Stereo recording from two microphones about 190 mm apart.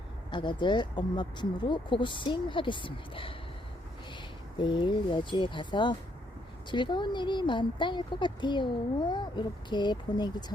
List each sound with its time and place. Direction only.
0.3 s speech: 25° left (ahead or behind)